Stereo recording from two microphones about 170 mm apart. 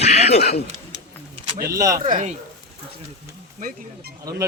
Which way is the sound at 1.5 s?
65° right (ahead or behind).